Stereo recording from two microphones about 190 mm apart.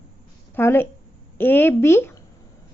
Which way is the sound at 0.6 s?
10° left (ahead or behind).